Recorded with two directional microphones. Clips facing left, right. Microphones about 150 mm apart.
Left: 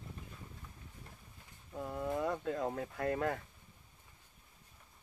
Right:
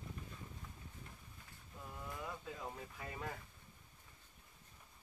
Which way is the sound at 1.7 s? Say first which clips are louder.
Left 12 dB; 65° left (ahead or behind).